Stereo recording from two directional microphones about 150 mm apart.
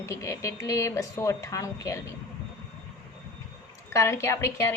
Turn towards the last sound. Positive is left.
turn(degrees=15)  # may be behind; listen again after turning